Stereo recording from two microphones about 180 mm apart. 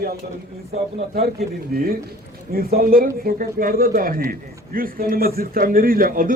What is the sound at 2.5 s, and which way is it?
A man's voice, 55° right (ahead or behind).